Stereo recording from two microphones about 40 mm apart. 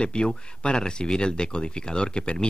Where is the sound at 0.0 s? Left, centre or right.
Left.